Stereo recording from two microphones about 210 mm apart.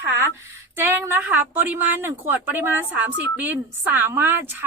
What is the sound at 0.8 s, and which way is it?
A woman's voice, 10° right (ahead or behind).